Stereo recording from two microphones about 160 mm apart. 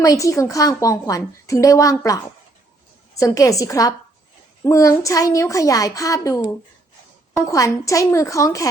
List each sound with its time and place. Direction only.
0.0 s a woman's voice: 20° left (ahead or behind)